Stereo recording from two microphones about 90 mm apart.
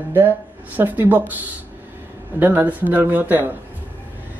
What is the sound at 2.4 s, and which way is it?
A woman's voice, 20° right (ahead or behind).